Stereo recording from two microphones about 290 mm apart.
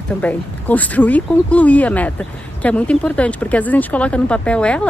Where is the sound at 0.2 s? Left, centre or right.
Centre.